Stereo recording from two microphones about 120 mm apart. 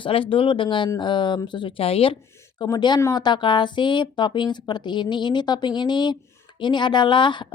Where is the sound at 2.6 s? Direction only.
35° left (ahead or behind).